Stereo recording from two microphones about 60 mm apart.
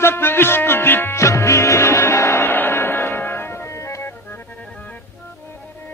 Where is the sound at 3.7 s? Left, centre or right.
Left.